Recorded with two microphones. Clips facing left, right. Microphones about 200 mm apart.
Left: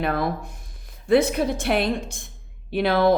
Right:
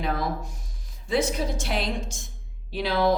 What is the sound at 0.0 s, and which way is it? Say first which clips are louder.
A woman's voice: left 4 dB; 60° left (ahead or behind).